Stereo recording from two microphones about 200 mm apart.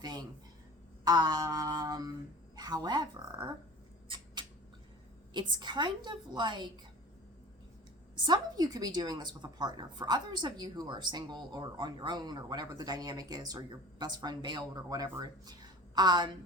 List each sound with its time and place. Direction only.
0.0 s a sound: 20° right (ahead or behind)
1.0 s a woman's voice: 20° right (ahead or behind)
5.3 s a woman's voice: 20° right (ahead or behind)
8.1 s a woman's voice: 20° right (ahead or behind)